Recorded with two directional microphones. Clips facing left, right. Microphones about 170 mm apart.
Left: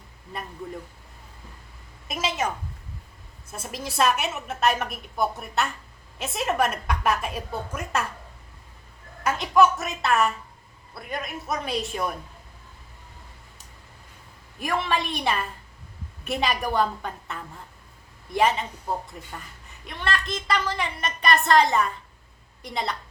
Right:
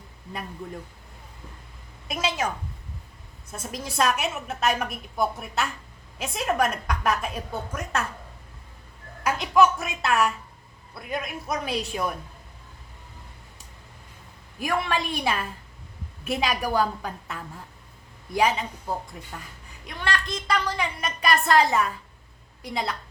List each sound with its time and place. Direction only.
2.0 s a woman's voice: 5° left (ahead or behind)
3.5 s a woman's voice: 5° left (ahead or behind)
9.2 s a woman's voice: centre (ahead or behind)
14.6 s a woman's voice: centre (ahead or behind)